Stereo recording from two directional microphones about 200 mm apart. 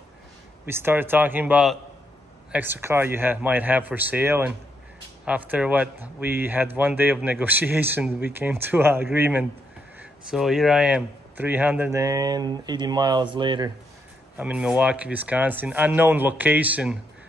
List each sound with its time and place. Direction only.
0.7 s speech: 10° right (ahead or behind)
14.3 s speech: 5° right (ahead or behind)